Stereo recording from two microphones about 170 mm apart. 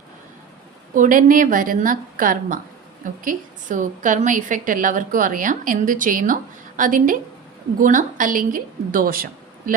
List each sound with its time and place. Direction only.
0.9 s a woman's voice: 50° right (ahead or behind)